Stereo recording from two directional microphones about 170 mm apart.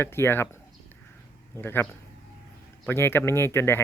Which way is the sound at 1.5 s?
15° left (ahead or behind).